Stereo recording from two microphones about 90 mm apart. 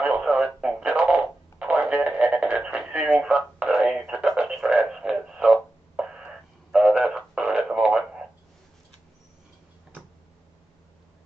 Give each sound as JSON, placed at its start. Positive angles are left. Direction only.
{"t": 0.0, "sound": "radio", "side_deg": -15}